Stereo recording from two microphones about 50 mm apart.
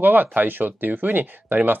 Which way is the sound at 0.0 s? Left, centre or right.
Right.